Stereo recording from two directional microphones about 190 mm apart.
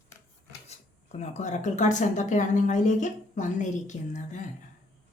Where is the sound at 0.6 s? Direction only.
35° left (ahead or behind).